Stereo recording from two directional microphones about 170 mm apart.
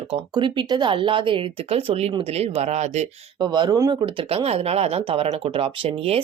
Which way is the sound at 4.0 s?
30° right (ahead or behind).